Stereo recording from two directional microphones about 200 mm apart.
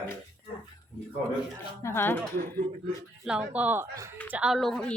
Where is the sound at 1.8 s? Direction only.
15° left (ahead or behind).